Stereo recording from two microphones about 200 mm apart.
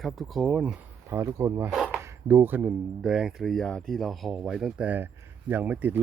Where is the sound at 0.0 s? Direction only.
Centre (ahead or behind).